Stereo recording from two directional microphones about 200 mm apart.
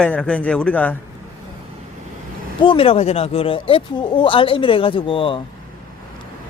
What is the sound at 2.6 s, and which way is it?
Speech, 25° left (ahead or behind).